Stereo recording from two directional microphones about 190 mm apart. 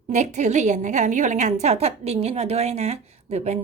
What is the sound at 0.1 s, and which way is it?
A woman's voice, 40° right (ahead or behind).